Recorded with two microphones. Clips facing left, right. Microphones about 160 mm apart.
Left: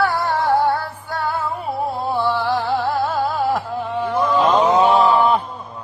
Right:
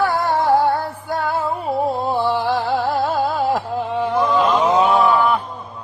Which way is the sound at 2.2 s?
15° right (ahead or behind).